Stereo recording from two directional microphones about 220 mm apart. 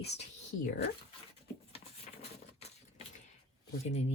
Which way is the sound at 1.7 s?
30° left (ahead or behind).